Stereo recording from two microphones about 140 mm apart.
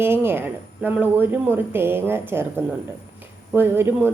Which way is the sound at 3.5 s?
15° right (ahead or behind).